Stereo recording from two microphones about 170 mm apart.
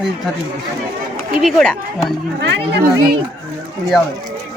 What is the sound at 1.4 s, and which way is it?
Speech, 5° left (ahead or behind).